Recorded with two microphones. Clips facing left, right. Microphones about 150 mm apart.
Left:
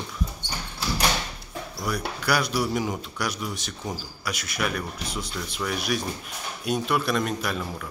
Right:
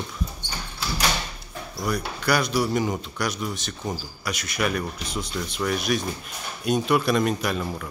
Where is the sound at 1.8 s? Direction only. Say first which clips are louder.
Right 2 dB; 5° left (ahead or behind).